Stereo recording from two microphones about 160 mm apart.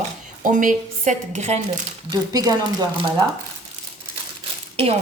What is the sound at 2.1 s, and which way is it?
Speech, 25° right (ahead or behind).